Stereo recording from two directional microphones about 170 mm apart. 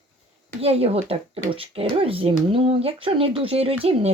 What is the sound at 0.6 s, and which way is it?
Speech, 35° right (ahead or behind).